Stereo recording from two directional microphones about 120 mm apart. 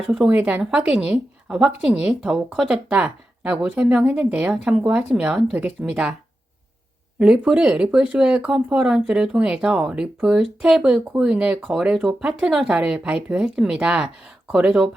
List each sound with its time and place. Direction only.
0.1 s speech: 10° right (ahead or behind)
7.2 s speech: 10° right (ahead or behind)